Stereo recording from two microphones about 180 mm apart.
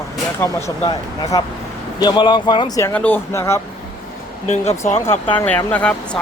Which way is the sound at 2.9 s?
10° left (ahead or behind).